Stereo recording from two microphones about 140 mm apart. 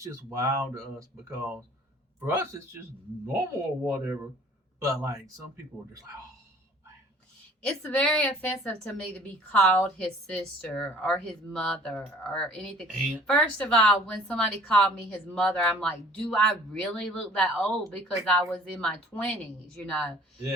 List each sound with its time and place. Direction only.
0.0 s speech: 20° right (ahead or behind)
7.6 s a woman's voice: 10° left (ahead or behind)